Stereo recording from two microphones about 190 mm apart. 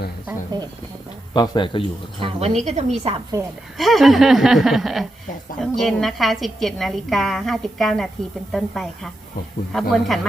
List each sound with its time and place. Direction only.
1.3 s a man's voice: 25° left (ahead or behind)
2.2 s a woman's voice: 35° right (ahead or behind)
3.8 s a woman's voice: centre (ahead or behind)